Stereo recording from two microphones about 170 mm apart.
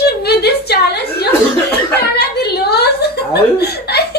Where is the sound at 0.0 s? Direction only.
70° left (ahead or behind).